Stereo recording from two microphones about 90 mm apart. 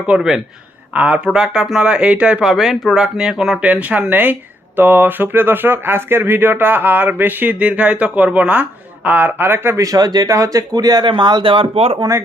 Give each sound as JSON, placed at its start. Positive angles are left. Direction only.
{"t": 0.0, "sound": "speech", "side_deg": -10}
{"t": 3.7, "sound": "speech", "side_deg": -15}
{"t": 9.8, "sound": "speech", "side_deg": -45}
{"t": 11.0, "sound": "speech", "side_deg": -65}